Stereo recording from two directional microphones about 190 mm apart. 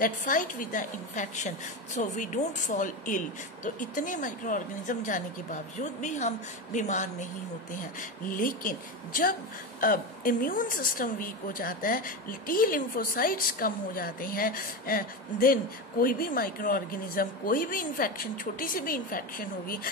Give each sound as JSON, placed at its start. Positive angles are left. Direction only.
{"t": 0.0, "sound": "a woman's voice", "side_deg": 45}
{"t": 8.3, "sound": "a woman's voice", "side_deg": 45}